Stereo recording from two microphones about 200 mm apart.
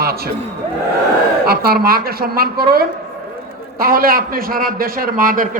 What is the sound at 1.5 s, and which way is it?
A man's voice, 50° right (ahead or behind).